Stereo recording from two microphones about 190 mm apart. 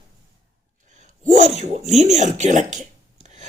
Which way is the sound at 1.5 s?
35° right (ahead or behind).